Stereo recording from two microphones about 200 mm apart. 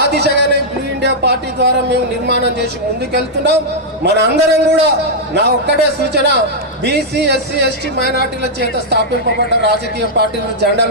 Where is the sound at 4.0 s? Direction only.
60° right (ahead or behind).